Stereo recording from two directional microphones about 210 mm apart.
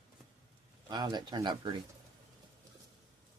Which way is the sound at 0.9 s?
20° right (ahead or behind).